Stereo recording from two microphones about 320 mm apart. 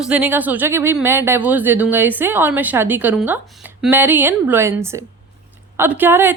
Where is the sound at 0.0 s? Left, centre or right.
Centre.